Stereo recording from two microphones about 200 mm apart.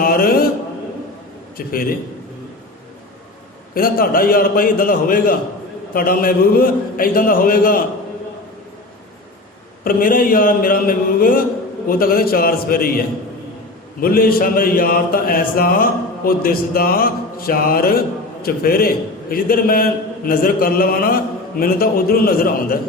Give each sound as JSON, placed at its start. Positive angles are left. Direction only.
{"t": 0.0, "sound": "a sound", "side_deg": 45}
{"t": 1.5, "sound": "a man's voice", "side_deg": 45}
{"t": 3.8, "sound": "a man's voice", "side_deg": 45}
{"t": 9.8, "sound": "a man's voice", "side_deg": 45}
{"t": 14.0, "sound": "a man's voice", "side_deg": 45}